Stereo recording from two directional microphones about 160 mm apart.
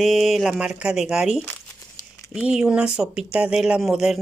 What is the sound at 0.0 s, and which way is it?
Speech, centre (ahead or behind).